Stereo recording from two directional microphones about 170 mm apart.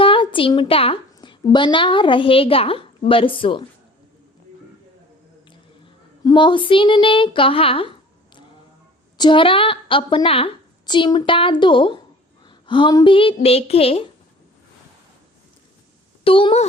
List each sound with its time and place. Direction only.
0.0 s a woman's voice: 30° left (ahead or behind)
5.5 s speech: 30° left (ahead or behind)
9.1 s a woman's voice: 30° left (ahead or behind)
16.2 s a woman's voice: 30° left (ahead or behind)